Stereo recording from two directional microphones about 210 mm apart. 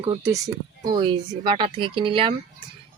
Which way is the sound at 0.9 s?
20° right (ahead or behind).